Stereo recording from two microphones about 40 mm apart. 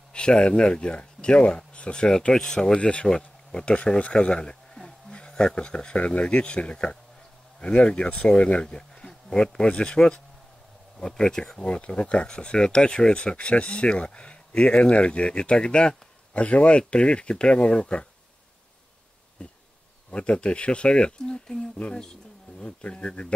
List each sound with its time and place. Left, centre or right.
0.1 s speech: left
2.8 s speech: left
4.7 s a sound: centre
5.9 s speech: left
11.7 s speech: left
19.4 s insect: left
20.1 s speech: left